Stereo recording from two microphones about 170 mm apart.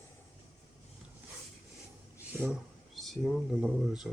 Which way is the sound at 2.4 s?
Centre (ahead or behind).